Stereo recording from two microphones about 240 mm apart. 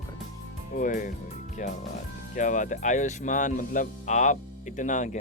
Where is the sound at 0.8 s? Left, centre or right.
Left.